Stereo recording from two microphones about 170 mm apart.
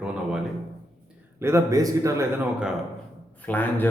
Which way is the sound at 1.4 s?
15° right (ahead or behind).